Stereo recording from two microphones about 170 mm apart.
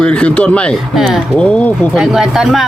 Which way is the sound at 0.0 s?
5° left (ahead or behind).